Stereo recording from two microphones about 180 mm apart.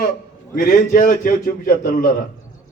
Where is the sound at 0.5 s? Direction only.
50° left (ahead or behind).